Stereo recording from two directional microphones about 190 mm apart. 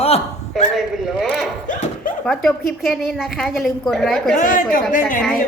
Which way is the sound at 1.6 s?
45° left (ahead or behind).